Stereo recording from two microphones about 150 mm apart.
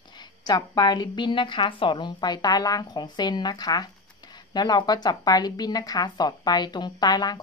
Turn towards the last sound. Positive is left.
turn(degrees=25)  # may be behind; listen again after turning